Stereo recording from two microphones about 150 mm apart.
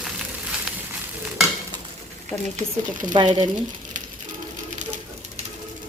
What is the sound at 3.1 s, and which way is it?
Speech, 30° right (ahead or behind).